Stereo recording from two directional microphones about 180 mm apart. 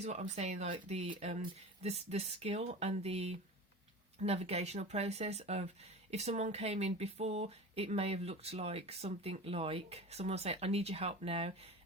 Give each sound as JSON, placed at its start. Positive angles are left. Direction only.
{"t": 0.0, "sound": "speech", "side_deg": -40}